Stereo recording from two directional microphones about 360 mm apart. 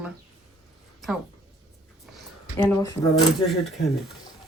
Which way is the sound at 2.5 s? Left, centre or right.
Centre.